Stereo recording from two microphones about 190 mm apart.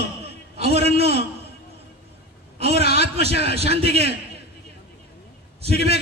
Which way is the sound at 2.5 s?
35° right (ahead or behind).